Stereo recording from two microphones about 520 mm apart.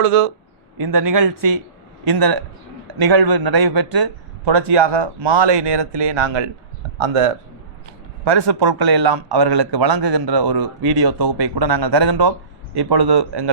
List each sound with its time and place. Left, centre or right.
0.0 s speech: right
0.8 s a man's voice: right
8.2 s a man's voice: right